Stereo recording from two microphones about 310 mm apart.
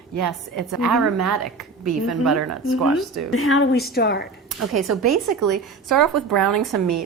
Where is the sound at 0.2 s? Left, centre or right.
Right.